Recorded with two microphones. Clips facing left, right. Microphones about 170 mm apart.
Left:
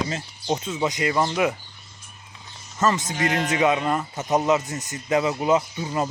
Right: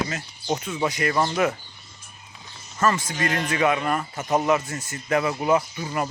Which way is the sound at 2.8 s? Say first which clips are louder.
Left 1 dB; 20° left (ahead or behind).